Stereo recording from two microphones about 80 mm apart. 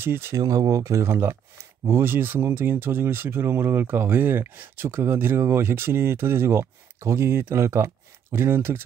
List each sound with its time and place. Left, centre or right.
0.0 s speech: right
0.4 s speech: right